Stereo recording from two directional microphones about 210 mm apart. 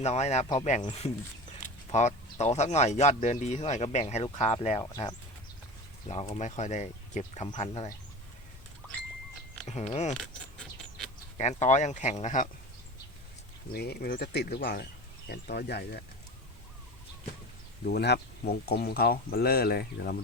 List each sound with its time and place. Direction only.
0.0 s speech: 30° left (ahead or behind)
4.8 s speech: 15° left (ahead or behind)
6.3 s speech: 35° left (ahead or behind)
7.4 s speech: 25° left (ahead or behind)
9.6 s speech: 30° left (ahead or behind)
11.3 s speech: 35° left (ahead or behind)
13.7 s speech: 50° left (ahead or behind)
17.8 s speech: 50° left (ahead or behind)